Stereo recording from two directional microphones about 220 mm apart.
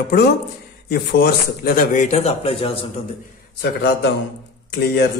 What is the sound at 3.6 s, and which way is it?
Speech, 45° left (ahead or behind).